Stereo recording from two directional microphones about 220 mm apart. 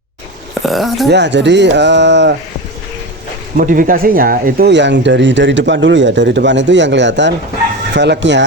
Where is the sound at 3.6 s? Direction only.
40° right (ahead or behind).